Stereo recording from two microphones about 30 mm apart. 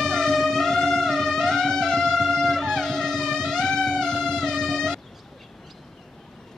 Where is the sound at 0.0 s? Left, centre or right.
Centre.